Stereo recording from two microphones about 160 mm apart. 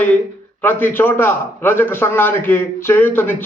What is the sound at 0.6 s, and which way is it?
A man's voice, 10° left (ahead or behind).